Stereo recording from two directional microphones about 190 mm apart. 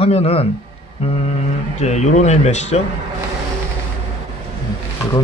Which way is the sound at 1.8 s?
40° left (ahead or behind).